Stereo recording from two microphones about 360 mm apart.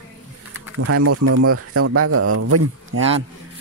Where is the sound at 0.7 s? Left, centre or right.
Right.